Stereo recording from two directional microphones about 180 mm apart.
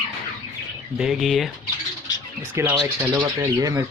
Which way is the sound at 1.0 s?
Centre (ahead or behind).